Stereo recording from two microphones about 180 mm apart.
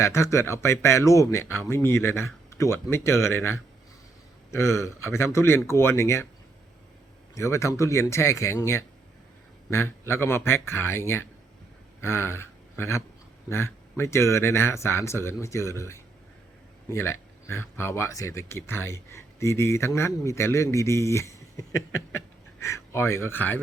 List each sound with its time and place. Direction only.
0.0 s speech: 15° left (ahead or behind)
7.3 s a man's voice: 15° left (ahead or behind)
22.6 s speech: 15° left (ahead or behind)